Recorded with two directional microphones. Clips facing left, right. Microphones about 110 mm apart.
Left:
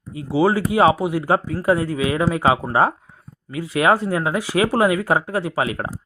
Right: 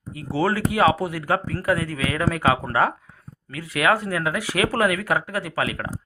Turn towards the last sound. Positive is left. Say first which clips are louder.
# left 4 dB
turn(degrees=25)  # may be behind; listen again after turning